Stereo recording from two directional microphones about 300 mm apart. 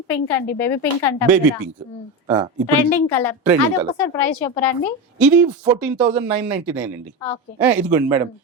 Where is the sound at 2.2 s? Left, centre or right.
Centre.